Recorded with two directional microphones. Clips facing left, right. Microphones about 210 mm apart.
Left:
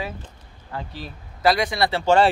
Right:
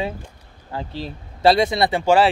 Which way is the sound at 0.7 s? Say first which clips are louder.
Right 4 dB; 30° right (ahead or behind).